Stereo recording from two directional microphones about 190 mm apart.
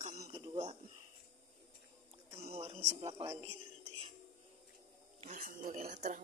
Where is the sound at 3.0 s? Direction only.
30° right (ahead or behind).